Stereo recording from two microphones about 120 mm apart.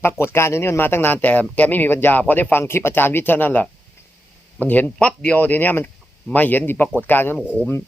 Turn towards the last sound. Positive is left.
turn(degrees=15)  # may be behind; listen again after turning